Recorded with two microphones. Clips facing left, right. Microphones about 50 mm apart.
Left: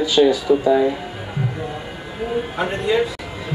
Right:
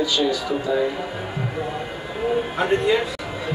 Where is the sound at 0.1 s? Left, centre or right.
Centre.